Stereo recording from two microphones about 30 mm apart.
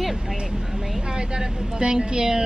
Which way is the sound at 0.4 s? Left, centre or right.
Right.